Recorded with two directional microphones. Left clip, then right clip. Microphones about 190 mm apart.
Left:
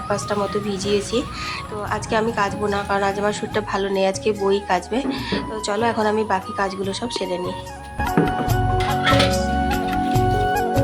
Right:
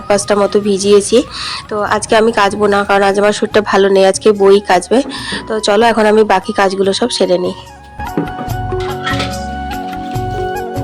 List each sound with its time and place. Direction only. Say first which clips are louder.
0.1 s speech: right 12 dB; 40° right (ahead or behind)
10.1 s music: even; centre (ahead or behind)